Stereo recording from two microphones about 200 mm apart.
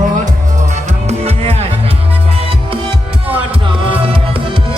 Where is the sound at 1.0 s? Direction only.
30° right (ahead or behind).